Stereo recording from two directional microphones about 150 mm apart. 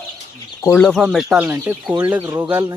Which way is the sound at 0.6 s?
10° left (ahead or behind).